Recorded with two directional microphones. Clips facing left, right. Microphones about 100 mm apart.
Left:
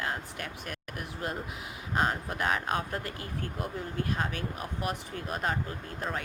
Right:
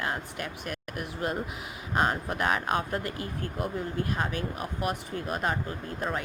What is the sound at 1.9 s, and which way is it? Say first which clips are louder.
Speech: right 2 dB; 65° right (ahead or behind).